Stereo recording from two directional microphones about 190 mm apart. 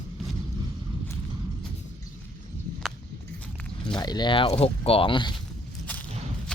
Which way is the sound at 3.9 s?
20° left (ahead or behind).